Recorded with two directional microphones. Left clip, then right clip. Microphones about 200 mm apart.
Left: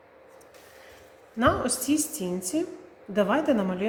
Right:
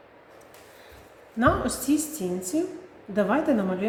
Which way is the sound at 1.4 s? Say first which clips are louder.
Right 1 dB; 25° left (ahead or behind).